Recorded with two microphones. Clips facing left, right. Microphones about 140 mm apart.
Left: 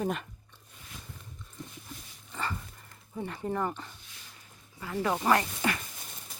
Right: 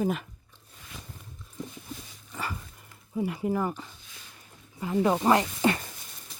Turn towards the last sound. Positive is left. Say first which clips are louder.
# right 4 dB
turn(degrees=-25)  # may be behind; listen again after turning